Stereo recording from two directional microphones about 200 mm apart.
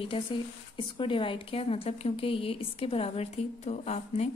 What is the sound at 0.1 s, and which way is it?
Speech, 30° left (ahead or behind).